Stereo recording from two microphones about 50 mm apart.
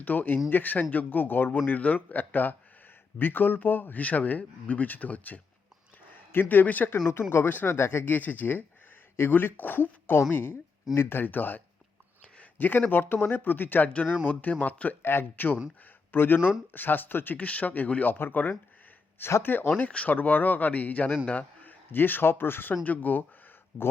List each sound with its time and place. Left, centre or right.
0.0 s speech: left
6.3 s speech: left
7.1 s speech: left
7.8 s speech: left
8.0 s speech: left
11.2 s speech: left
15.0 s speech: left
17.3 s speech: left
21.2 s a sound: left
21.9 s speech: left
22.8 s speech: left